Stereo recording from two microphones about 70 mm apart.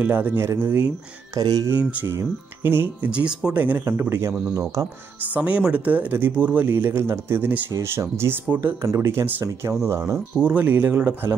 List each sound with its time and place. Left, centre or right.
0.0 s speech: right
1.3 s speech: right
1.7 s speech: right
2.0 s speech: right
3.1 s speech: centre
3.5 s speech: right
4.1 s speech: right
4.8 s speech: right
5.2 s speech: right
6.6 s speech: right
10.1 s speech: centre
10.6 s speech: right